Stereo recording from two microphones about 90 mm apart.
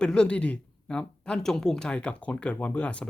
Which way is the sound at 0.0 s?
10° left (ahead or behind).